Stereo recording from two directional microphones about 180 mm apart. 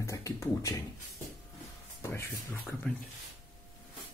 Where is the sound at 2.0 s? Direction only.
15° left (ahead or behind).